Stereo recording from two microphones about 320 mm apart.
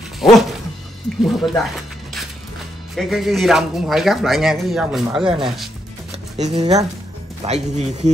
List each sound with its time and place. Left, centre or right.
0.2 s dog: centre
1.2 s speech: centre
3.0 s speech: centre
6.3 s speech: right